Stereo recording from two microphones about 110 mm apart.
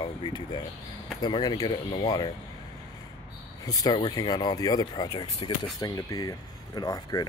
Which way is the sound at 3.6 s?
35° left (ahead or behind).